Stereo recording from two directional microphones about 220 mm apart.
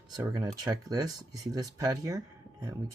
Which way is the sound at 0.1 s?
15° right (ahead or behind).